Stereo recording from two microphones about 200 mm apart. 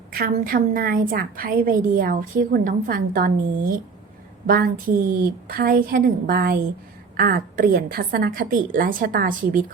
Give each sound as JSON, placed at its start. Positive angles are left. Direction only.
{"t": 0.1, "sound": "a woman's voice", "side_deg": -45}